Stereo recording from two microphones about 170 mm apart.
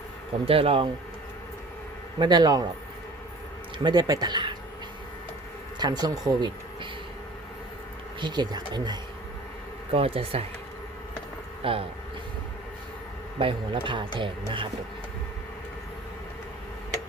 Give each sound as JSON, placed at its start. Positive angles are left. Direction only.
{"t": 0.4, "sound": "speech", "side_deg": -35}
{"t": 2.1, "sound": "speech", "side_deg": -25}
{"t": 3.8, "sound": "speech", "side_deg": -25}
{"t": 5.8, "sound": "speech", "side_deg": -25}
{"t": 8.2, "sound": "speech", "side_deg": -25}
{"t": 11.6, "sound": "speech", "side_deg": -35}
{"t": 13.4, "sound": "speech", "side_deg": -30}